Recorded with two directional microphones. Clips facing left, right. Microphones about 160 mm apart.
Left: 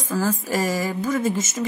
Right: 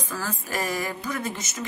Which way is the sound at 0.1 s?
40° left (ahead or behind).